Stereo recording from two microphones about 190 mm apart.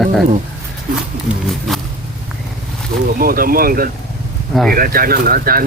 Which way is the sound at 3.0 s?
50° right (ahead or behind).